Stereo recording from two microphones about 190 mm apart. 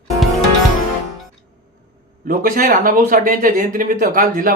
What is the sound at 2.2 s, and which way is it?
Speech, 45° right (ahead or behind).